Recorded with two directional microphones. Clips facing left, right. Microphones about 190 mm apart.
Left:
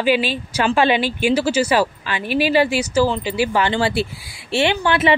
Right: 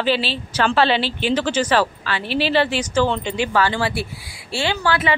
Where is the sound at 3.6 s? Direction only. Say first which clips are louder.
Even; 25° left (ahead or behind).